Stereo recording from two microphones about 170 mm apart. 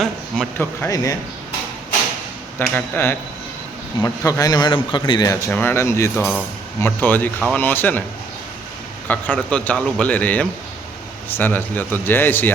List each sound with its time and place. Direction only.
0.0 s speech: 10° left (ahead or behind)
2.6 s a man's voice: 10° left (ahead or behind)
5.5 s speech: 10° left (ahead or behind)
9.0 s speech: 10° left (ahead or behind)